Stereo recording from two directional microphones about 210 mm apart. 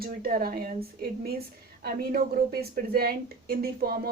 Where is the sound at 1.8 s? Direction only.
45° right (ahead or behind).